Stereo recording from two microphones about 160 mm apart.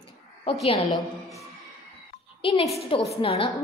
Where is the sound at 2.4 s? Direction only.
35° left (ahead or behind).